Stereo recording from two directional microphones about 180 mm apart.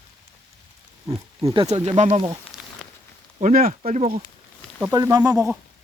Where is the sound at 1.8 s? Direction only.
40° right (ahead or behind).